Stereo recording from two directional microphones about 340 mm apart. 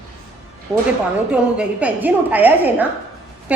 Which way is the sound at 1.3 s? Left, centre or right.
Centre.